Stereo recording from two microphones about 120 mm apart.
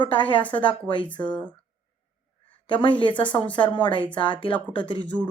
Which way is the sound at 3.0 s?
40° left (ahead or behind).